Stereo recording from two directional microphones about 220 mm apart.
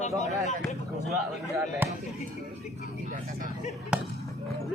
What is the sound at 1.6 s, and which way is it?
Speech, 10° right (ahead or behind).